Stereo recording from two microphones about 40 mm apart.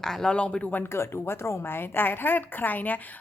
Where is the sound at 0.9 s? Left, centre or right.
Left.